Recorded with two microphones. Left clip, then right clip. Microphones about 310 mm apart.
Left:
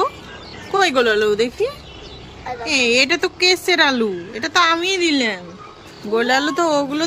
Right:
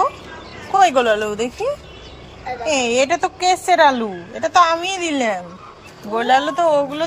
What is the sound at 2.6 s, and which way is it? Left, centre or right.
Speech, centre.